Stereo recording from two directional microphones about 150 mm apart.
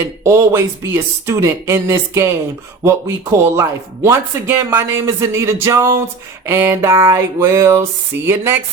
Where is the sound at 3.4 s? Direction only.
15° right (ahead or behind).